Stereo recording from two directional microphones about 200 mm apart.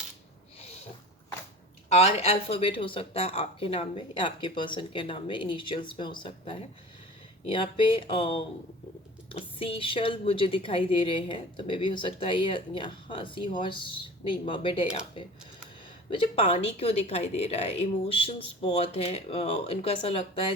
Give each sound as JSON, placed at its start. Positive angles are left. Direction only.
{"t": 1.9, "sound": "a woman's voice", "side_deg": 30}
{"t": 16.1, "sound": "a woman's voice", "side_deg": 25}